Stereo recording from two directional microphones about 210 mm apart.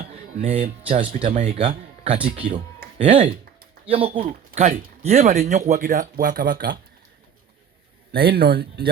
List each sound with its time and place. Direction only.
0.1 s a sound: 35° right (ahead or behind)
0.9 s speech: 30° right (ahead or behind)
8.1 s speech: 45° right (ahead or behind)